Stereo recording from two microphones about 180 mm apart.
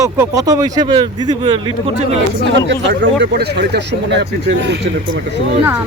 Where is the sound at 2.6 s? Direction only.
75° right (ahead or behind).